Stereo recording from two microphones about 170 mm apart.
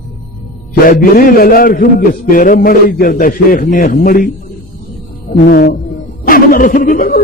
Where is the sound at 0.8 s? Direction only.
55° left (ahead or behind).